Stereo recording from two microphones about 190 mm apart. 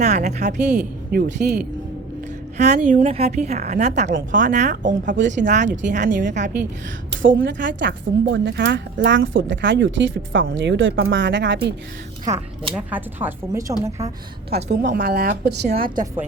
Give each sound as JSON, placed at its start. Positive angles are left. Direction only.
{"t": 0.0, "sound": "a woman's voice", "side_deg": -35}
{"t": 1.1, "sound": "a woman's voice", "side_deg": -55}
{"t": 2.6, "sound": "a woman's voice", "side_deg": -40}
{"t": 7.1, "sound": "a woman's voice", "side_deg": -85}
{"t": 12.2, "sound": "speech", "side_deg": -20}
{"t": 12.7, "sound": "speech", "side_deg": -10}
{"t": 14.8, "sound": "a woman's voice", "side_deg": -60}